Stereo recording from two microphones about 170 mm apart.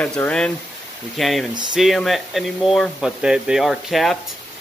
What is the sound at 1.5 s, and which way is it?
Speech, 25° right (ahead or behind).